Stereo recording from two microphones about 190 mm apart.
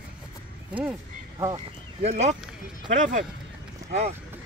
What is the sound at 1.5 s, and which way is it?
Speech, 35° right (ahead or behind).